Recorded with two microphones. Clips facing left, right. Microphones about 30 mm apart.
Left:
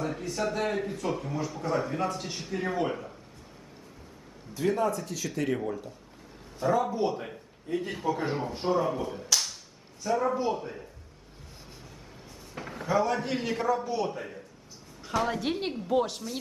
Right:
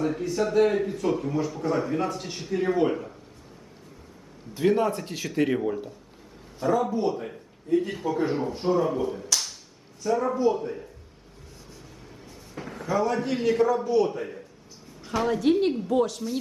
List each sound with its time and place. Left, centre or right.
0.0 s speech: centre
4.5 s speech: right
4.8 s speech: right
5.3 s speech: right
6.7 s speech: centre
9.3 s a sound: centre
10.0 s speech: centre
12.5 s a man's voice: centre